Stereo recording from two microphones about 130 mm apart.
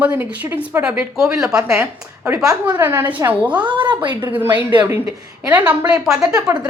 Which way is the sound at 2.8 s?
15° right (ahead or behind).